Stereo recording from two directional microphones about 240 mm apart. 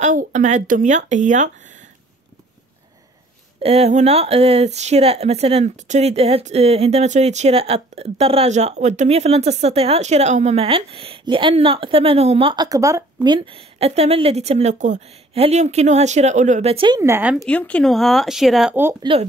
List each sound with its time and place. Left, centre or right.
0.0 s speech: right
3.6 s speech: right; by 17.5 s centre
17.5 s speech: centre